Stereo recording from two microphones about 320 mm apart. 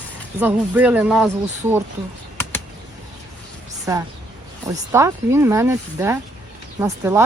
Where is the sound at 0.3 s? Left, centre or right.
Centre.